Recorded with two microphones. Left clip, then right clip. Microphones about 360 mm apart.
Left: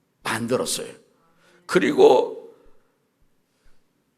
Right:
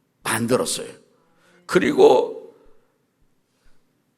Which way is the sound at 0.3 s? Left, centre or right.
Right.